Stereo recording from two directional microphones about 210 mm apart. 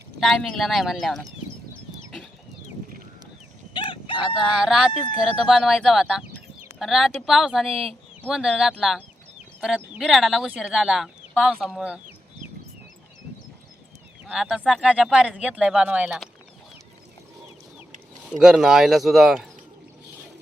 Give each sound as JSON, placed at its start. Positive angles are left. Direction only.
{"t": 0.2, "sound": "speech", "side_deg": 0}
{"t": 1.9, "sound": "a sound", "side_deg": 0}
{"t": 3.8, "sound": "fowl", "side_deg": 25}
{"t": 4.4, "sound": "speech", "side_deg": -5}
{"t": 14.3, "sound": "speech", "side_deg": 0}
{"t": 18.3, "sound": "speech", "side_deg": 0}